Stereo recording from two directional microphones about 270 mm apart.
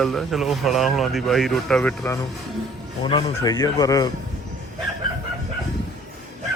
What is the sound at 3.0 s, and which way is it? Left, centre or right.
Speech, centre.